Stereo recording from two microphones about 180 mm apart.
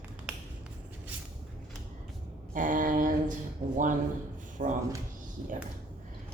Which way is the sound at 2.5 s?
45° right (ahead or behind).